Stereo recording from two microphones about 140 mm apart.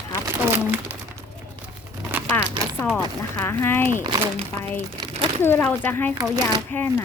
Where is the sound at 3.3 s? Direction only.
15° left (ahead or behind).